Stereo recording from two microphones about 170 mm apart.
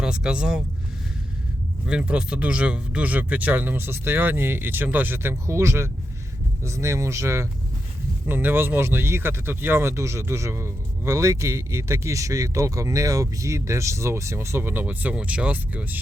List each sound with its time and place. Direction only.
0.0 s speech: 5° right (ahead or behind)
1.9 s speech: 5° right (ahead or behind)